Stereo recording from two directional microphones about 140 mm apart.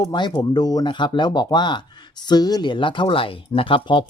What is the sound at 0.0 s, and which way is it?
Speech, 30° left (ahead or behind).